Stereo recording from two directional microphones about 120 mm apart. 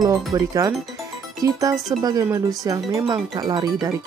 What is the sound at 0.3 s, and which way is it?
Speech, 30° right (ahead or behind).